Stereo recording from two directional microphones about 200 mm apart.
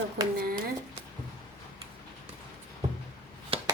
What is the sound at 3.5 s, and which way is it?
Chop, 30° right (ahead or behind).